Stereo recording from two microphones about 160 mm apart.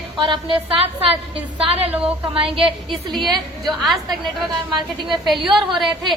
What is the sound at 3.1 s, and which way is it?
Speech, centre (ahead or behind).